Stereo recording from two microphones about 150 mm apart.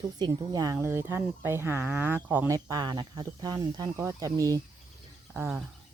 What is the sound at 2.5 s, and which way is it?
Speech, 25° right (ahead or behind).